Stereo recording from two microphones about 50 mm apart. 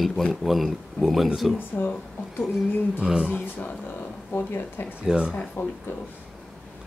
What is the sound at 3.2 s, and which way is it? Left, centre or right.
Speech, left.